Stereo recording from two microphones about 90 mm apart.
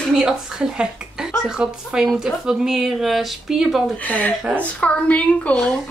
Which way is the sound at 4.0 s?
15° left (ahead or behind).